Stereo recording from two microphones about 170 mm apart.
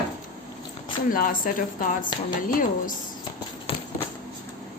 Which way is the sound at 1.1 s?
55° left (ahead or behind).